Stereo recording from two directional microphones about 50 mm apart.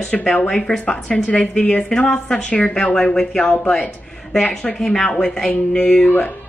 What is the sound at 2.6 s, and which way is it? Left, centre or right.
Speech, left.